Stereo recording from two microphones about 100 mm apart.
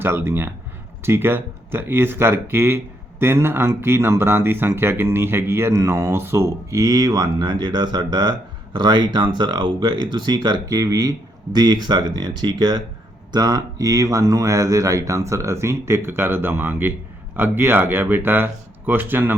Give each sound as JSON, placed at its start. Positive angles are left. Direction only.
{"t": 0.0, "sound": "speech", "side_deg": -25}